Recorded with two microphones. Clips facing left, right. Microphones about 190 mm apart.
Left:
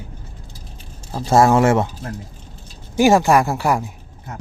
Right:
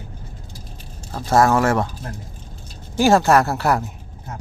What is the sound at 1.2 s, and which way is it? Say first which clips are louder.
Speech: left 2 dB; 25° left (ahead or behind).